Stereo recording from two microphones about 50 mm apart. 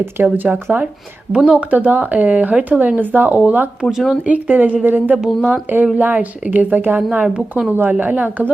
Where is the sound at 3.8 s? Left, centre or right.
Right.